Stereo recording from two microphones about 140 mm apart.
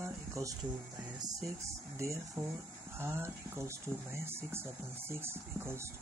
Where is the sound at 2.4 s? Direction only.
20° right (ahead or behind).